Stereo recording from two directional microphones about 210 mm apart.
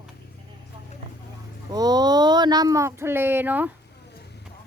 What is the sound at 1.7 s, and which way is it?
Speech, 20° right (ahead or behind).